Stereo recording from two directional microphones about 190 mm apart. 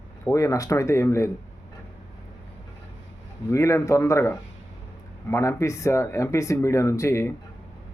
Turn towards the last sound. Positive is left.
turn(degrees=15)  # may be behind; listen again after turning